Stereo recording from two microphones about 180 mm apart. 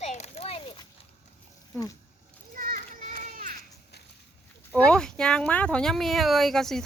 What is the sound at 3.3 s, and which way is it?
Children playing, 50° right (ahead or behind).